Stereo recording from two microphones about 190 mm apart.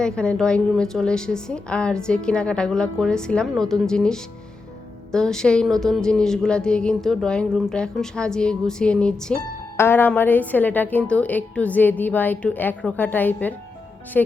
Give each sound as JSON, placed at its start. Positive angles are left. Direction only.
{"t": 0.0, "sound": "a woman's voice", "side_deg": 5}